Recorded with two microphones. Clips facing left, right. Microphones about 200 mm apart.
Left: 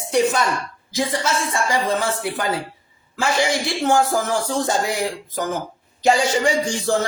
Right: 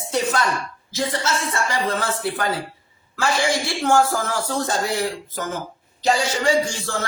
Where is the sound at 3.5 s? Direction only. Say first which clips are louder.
Even; 20° left (ahead or behind).